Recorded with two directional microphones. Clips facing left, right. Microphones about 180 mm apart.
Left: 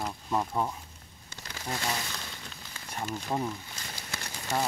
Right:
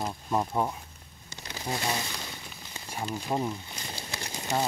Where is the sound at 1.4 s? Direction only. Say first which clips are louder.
Right 3 dB; 20° right (ahead or behind).